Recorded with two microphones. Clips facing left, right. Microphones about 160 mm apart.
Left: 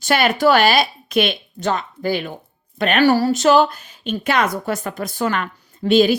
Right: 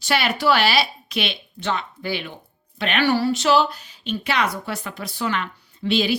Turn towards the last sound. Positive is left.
turn(degrees=45)  # may be behind; listen again after turning